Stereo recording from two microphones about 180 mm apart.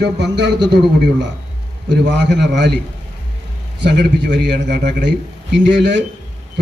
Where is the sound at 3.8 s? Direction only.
70° right (ahead or behind).